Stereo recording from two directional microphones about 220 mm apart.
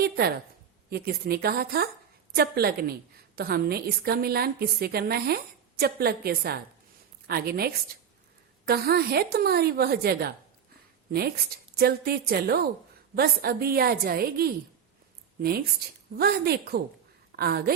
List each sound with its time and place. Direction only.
0.0 s a woman's voice: 45° right (ahead or behind)